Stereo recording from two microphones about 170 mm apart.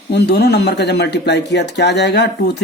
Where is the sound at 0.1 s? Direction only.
80° left.